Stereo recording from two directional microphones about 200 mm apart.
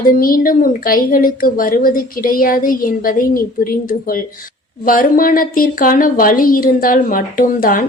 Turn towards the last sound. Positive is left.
turn(degrees=45)  # may be behind; listen again after turning